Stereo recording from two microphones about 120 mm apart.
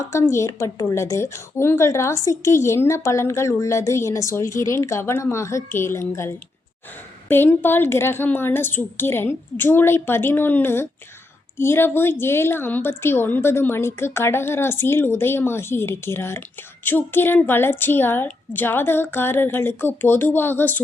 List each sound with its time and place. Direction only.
0.0 s a woman's voice: 25° left (ahead or behind)